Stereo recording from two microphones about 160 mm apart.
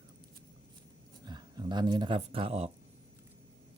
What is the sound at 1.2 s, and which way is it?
Speech, 25° right (ahead or behind).